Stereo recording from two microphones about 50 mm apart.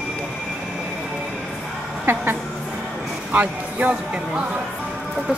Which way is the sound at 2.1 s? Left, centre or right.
Right.